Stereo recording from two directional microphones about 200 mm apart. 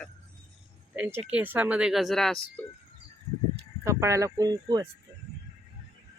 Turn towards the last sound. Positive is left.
turn(degrees=-20)  # may be behind; listen again after turning